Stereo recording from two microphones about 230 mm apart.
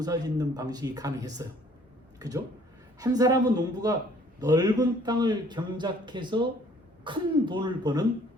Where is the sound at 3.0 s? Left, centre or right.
Centre.